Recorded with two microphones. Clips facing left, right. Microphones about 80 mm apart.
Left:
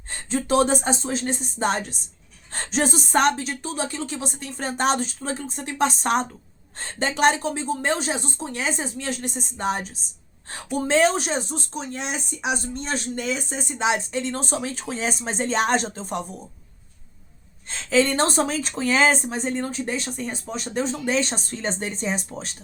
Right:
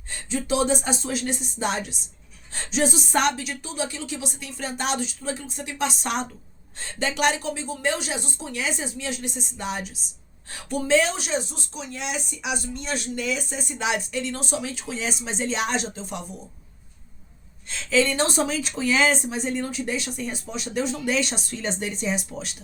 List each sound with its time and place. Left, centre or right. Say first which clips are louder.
0.1 s speech: left 3 dB; left
0.9 s speech: left 1 dB; left
17.7 s speech: left 2 dB; left